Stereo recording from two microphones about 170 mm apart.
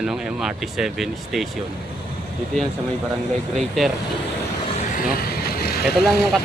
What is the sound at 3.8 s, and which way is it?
Speech, centre (ahead or behind).